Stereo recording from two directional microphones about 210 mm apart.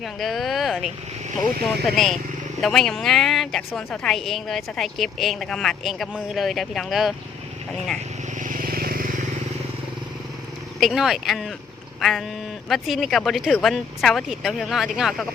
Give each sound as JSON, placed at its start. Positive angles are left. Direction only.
{"t": 0.0, "sound": "a woman's voice", "side_deg": 0}
{"t": 8.4, "sound": "vehicle", "side_deg": -40}
{"t": 10.8, "sound": "a woman's voice", "side_deg": 0}